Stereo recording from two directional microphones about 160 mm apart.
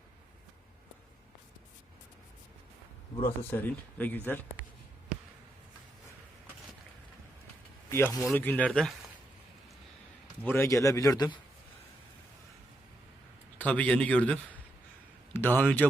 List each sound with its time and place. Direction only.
3.2 s speech: 15° left (ahead or behind)
7.9 s speech: 15° left (ahead or behind)
10.4 s a man's voice: 15° left (ahead or behind)
13.6 s speech: 10° left (ahead or behind)